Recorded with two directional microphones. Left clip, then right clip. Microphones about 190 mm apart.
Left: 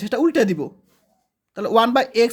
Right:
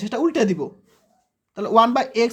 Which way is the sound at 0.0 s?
30° left (ahead or behind).